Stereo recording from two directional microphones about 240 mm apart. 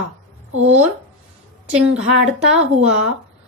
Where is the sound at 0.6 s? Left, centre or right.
Right.